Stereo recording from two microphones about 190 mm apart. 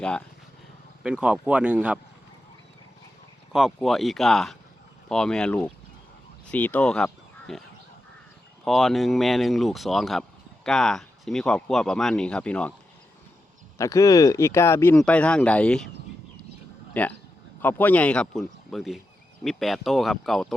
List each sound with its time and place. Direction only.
0.0 s speech: 5° left (ahead or behind)
1.0 s speech: 5° right (ahead or behind)
3.5 s speech: centre (ahead or behind)
8.6 s speech: centre (ahead or behind)
13.7 s speech: 15° left (ahead or behind)
16.9 s speech: 10° left (ahead or behind)